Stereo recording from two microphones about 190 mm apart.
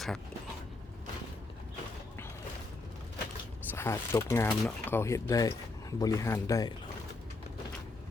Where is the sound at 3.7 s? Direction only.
15° left (ahead or behind).